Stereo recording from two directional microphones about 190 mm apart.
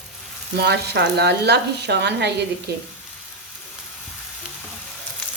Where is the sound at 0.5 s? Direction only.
60° right (ahead or behind).